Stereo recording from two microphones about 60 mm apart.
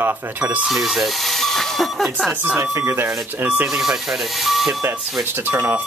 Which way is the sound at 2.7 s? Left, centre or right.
Right.